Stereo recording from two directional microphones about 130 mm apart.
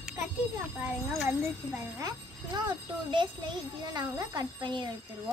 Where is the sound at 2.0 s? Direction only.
35° right (ahead or behind).